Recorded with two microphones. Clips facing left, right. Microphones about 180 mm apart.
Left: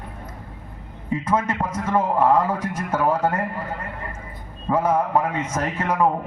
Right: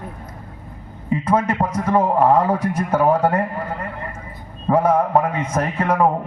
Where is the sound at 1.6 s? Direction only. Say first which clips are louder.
Right 4 dB; 35° right (ahead or behind).